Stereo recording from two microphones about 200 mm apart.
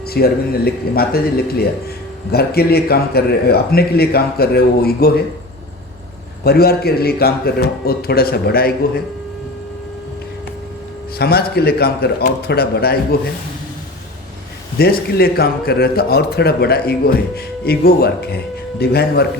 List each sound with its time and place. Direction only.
0.1 s a man's voice: 50° left (ahead or behind)
6.4 s a man's voice: 50° left (ahead or behind)
11.2 s a man's voice: 50° left (ahead or behind)
14.8 s a man's voice: 50° left (ahead or behind)